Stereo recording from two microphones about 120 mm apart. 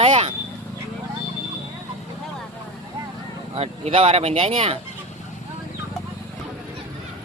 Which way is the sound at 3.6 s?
55° right (ahead or behind).